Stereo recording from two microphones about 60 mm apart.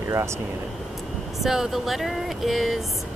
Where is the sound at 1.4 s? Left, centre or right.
Centre.